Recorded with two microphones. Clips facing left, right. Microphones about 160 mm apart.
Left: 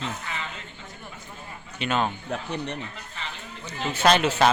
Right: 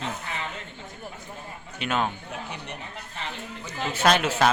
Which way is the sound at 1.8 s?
5° right (ahead or behind).